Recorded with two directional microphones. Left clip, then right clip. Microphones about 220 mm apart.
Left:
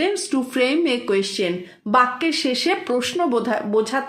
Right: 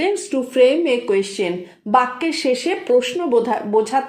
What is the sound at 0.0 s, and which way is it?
A woman's voice, 15° left (ahead or behind).